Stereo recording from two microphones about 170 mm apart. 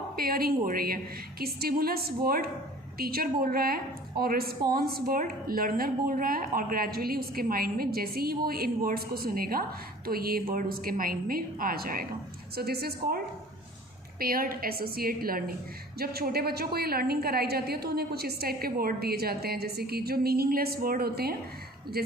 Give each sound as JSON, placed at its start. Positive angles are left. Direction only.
{"t": 0.2, "sound": "a woman's voice", "side_deg": -60}
{"t": 14.2, "sound": "a woman's voice", "side_deg": -60}